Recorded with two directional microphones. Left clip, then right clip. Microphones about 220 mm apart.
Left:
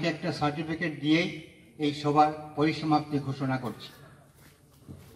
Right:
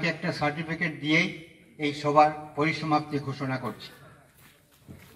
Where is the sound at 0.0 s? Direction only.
25° right (ahead or behind).